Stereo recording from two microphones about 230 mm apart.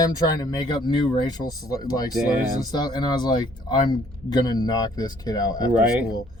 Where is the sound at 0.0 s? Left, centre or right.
Centre.